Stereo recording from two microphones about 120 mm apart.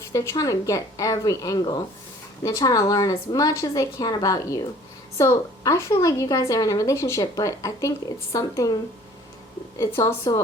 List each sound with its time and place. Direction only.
0.1 s a woman's voice: 25° left (ahead or behind)